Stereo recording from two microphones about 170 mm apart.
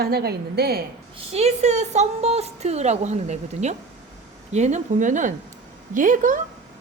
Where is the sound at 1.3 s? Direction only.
40° right (ahead or behind).